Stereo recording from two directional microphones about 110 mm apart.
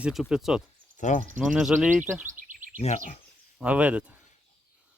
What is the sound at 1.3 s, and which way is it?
Speech, 10° right (ahead or behind).